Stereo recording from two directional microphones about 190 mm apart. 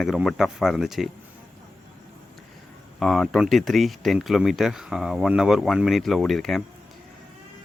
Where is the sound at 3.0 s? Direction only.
Centre (ahead or behind).